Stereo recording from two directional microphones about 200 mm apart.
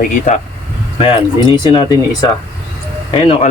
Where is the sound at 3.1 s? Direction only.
30° left (ahead or behind).